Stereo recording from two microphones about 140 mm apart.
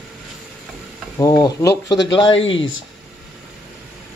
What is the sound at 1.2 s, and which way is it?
Speech, 25° left (ahead or behind).